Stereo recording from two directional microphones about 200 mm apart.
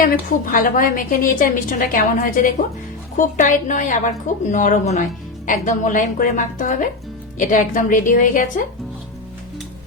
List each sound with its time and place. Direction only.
0.0 s a woman's voice: 40° left (ahead or behind)